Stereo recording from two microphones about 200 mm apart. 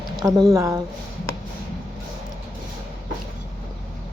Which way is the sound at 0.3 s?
15° right (ahead or behind).